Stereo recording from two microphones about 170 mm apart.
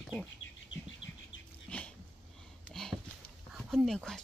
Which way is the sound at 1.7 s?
5° left (ahead or behind).